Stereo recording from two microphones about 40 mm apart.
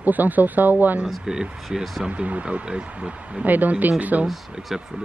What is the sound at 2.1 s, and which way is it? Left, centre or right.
Speech, right.